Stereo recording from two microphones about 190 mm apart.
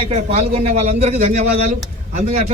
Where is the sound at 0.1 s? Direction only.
35° right (ahead or behind).